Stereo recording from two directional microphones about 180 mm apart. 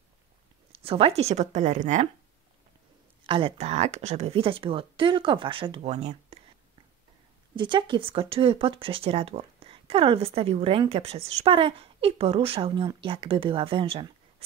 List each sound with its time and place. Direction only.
0.7 s speech: 35° right (ahead or behind)
3.3 s speech: 30° right (ahead or behind)
7.5 s speech: 25° right (ahead or behind)